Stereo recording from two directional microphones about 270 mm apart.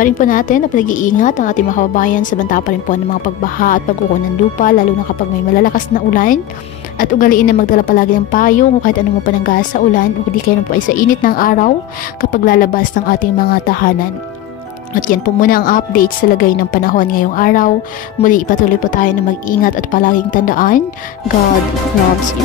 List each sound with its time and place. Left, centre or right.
0.0 s a woman's voice: left
15.0 s a woman's voice: left